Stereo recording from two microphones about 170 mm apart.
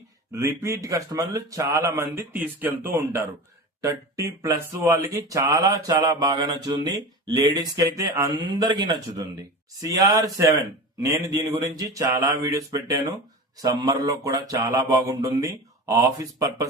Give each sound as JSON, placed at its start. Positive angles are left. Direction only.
{"t": 0.3, "sound": "speech", "side_deg": -15}